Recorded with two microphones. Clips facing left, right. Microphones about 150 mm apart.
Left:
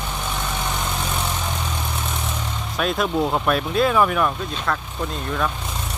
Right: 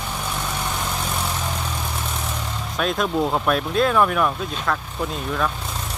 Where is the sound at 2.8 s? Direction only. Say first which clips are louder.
Even; centre (ahead or behind).